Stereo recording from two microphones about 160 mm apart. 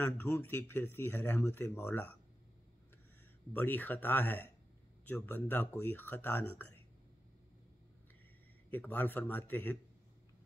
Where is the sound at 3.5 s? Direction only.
10° left (ahead or behind).